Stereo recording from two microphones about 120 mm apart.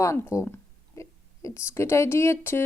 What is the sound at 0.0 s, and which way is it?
A woman's voice, 25° left (ahead or behind).